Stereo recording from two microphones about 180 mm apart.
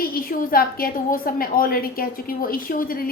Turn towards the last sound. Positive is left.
turn(degrees=50)  # may be behind; listen again after turning